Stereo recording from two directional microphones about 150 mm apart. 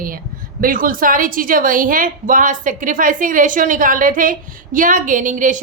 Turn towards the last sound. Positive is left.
turn(degrees=-55)  # may be behind; listen again after turning